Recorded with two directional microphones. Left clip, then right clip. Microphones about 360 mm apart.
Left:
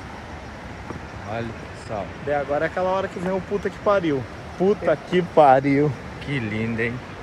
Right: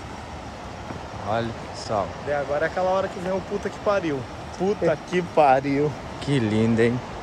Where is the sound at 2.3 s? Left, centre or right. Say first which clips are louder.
Left 3 dB; left.